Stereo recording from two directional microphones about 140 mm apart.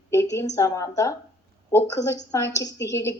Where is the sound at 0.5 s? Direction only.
20° left (ahead or behind).